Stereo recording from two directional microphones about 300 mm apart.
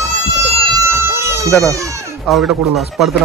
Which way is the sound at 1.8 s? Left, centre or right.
Centre.